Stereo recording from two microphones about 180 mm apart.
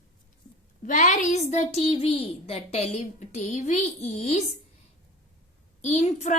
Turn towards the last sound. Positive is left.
turn(degrees=40)  # may be behind; listen again after turning